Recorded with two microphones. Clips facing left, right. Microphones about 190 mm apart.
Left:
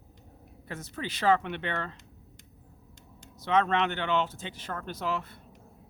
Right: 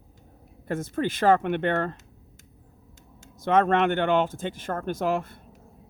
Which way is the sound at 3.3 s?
50° right (ahead or behind).